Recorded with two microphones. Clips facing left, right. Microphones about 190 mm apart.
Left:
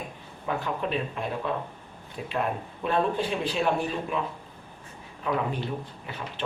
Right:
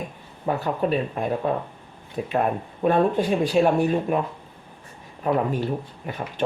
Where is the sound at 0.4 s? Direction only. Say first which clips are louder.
Right 6 dB; 40° right (ahead or behind).